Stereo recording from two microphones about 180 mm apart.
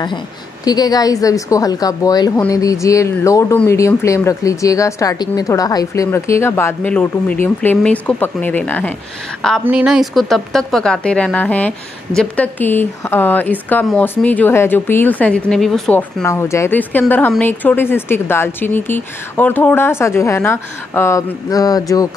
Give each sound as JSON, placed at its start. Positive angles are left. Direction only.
{"t": 0.7, "sound": "a woman's voice", "side_deg": 20}
{"t": 9.7, "sound": "speech", "side_deg": -5}